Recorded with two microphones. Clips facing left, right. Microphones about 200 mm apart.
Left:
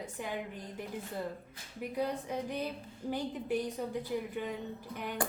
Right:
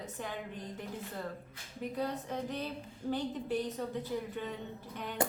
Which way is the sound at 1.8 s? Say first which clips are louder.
Left 1 dB; 10° left (ahead or behind).